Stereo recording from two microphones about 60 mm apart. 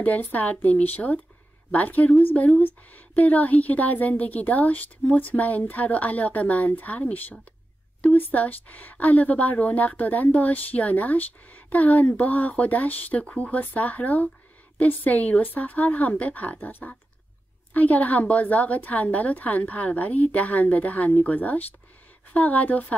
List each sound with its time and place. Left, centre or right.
0.0 s a woman's voice: left